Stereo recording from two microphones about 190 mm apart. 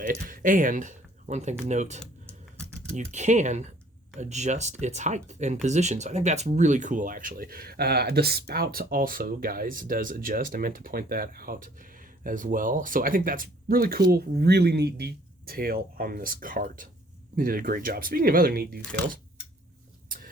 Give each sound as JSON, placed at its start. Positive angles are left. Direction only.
{"t": 0.0, "sound": "speech", "side_deg": -45}
{"t": 20.1, "sound": "vehicle", "side_deg": -45}